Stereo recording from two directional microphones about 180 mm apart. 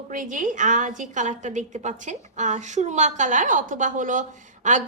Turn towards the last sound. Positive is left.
turn(degrees=-45)  # may be behind; listen again after turning